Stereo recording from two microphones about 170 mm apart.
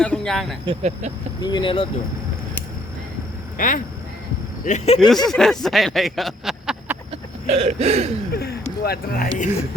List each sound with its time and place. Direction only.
0.0 s speech: 5° left (ahead or behind)
0.8 s speech: 40° right (ahead or behind)
1.4 s speech: 25° left (ahead or behind)
3.6 s speech: 55° left (ahead or behind)
4.6 s speech: 45° left (ahead or behind)
4.9 s speech: centre (ahead or behind)
7.1 s a sound: 40° right (ahead or behind)
8.3 s speech: 70° left (ahead or behind)